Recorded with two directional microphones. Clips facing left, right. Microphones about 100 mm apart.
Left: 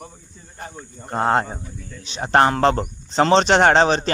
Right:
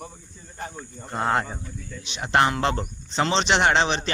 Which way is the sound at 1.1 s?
30° left (ahead or behind).